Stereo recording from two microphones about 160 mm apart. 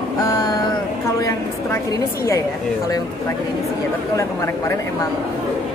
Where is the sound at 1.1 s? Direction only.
20° left (ahead or behind).